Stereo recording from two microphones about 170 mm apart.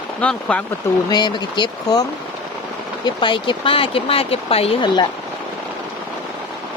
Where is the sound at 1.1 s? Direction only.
25° left (ahead or behind).